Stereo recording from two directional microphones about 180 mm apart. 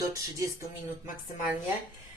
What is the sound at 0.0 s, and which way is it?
Speech, 15° right (ahead or behind).